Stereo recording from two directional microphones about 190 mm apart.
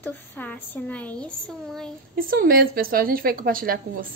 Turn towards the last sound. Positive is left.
turn(degrees=-50)  # may be behind; listen again after turning